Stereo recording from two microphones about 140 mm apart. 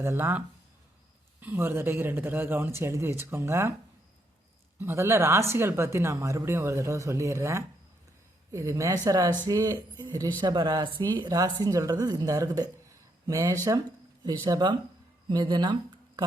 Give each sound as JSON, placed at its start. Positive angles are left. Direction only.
{"t": 0.0, "sound": "speech", "side_deg": -15}
{"t": 4.8, "sound": "speech", "side_deg": -20}